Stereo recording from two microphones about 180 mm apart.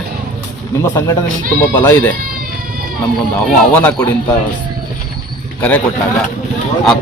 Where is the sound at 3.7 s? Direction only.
10° left (ahead or behind).